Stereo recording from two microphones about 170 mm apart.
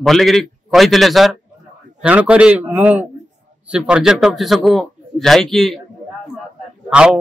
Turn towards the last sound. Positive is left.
turn(degrees=-5)  # may be behind; listen again after turning